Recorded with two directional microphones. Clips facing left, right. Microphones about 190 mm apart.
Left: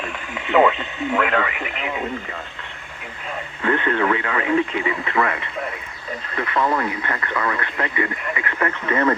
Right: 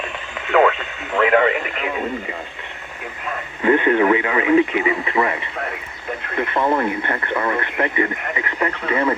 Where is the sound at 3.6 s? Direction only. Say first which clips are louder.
Right 5 dB; 15° right (ahead or behind).